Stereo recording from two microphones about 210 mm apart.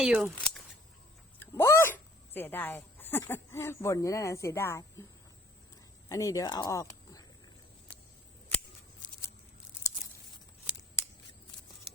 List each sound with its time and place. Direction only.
0.0 s speech: centre (ahead or behind)
6.1 s speech: 15° left (ahead or behind)
10.7 s scissors: 5° right (ahead or behind)
11.9 s scissors: 5° right (ahead or behind)